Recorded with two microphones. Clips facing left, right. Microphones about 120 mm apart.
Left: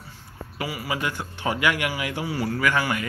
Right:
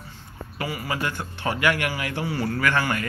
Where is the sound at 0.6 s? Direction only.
10° left (ahead or behind).